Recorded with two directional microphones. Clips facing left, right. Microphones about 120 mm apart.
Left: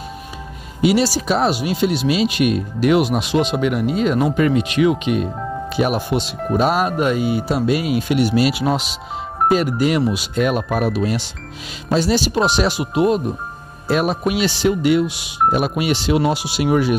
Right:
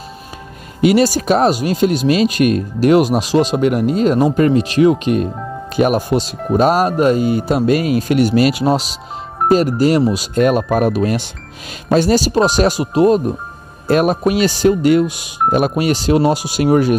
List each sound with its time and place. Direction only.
0.7 s speech: 50° right (ahead or behind)
13.8 s speech: 50° right (ahead or behind)